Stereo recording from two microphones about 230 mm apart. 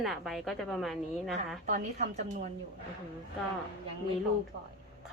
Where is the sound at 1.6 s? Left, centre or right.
Right.